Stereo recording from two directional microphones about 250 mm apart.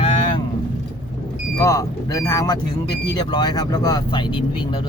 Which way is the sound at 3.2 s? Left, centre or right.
Centre.